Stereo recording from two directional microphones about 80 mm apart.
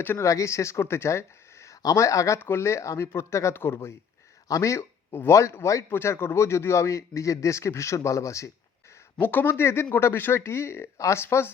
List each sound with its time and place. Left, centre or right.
0.2 s a man's voice: left
1.6 s speech: left
2.4 s a man's voice: left
9.1 s a man's voice: left